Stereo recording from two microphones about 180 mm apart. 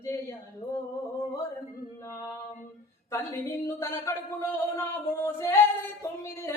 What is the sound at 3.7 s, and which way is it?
Speech, 15° left (ahead or behind).